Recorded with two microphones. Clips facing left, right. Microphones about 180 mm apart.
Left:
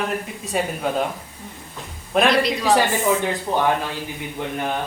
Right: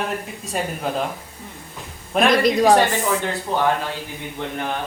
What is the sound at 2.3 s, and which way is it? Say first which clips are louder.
Speech: right 7 dB; 45° right (ahead or behind).